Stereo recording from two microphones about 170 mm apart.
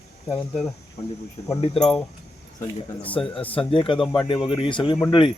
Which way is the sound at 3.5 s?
30° left (ahead or behind).